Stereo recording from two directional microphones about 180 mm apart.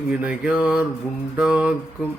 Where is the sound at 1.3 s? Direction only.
5° right (ahead or behind).